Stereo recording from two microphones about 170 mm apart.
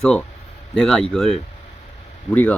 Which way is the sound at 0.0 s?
5° left (ahead or behind).